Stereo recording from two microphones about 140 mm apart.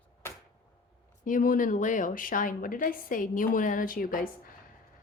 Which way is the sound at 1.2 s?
70° left (ahead or behind).